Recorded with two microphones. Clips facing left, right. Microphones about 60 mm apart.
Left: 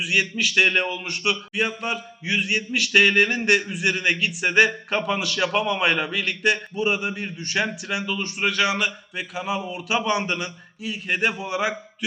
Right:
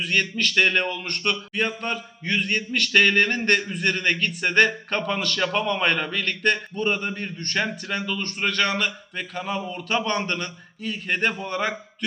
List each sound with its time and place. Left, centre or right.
0.0 s speech: centre